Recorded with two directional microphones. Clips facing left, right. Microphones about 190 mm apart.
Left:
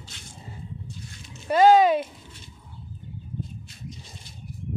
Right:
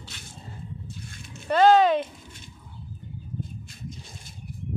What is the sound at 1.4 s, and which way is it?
Speech, 10° left (ahead or behind).